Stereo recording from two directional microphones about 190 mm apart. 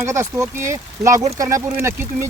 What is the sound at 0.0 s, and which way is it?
Speech, 15° right (ahead or behind).